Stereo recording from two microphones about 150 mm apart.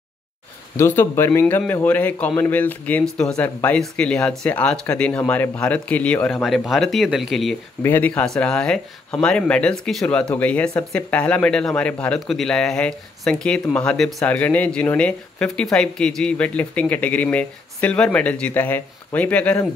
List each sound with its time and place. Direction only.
0.7 s speech: 15° left (ahead or behind); by 7.5 s centre (ahead or behind)
7.8 s speech: 10° left (ahead or behind)